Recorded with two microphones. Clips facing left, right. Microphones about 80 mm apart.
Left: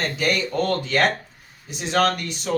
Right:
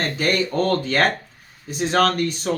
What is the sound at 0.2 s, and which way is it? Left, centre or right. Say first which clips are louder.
Speech: right 2 dB; right.